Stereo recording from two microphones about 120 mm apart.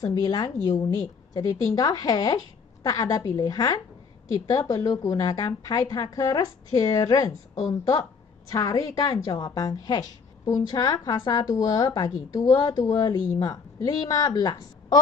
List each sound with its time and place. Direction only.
0.0 s a woman's voice: 35° left (ahead or behind)
8.5 s a woman's voice: 30° left (ahead or behind)